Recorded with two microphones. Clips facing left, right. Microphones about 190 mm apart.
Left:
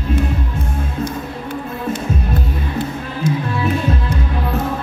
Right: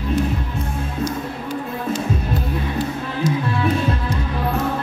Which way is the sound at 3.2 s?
55° left (ahead or behind).